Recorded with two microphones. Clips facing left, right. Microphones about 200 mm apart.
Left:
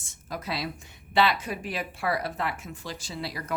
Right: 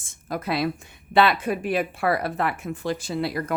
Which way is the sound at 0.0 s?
55° right (ahead or behind).